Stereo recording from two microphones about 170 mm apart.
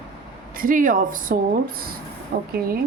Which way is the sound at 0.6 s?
55° right (ahead or behind).